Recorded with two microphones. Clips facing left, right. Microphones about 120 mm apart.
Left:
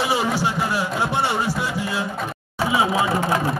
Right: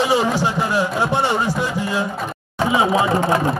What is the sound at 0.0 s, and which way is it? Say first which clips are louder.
Speech: right 4 dB; 15° left (ahead or behind).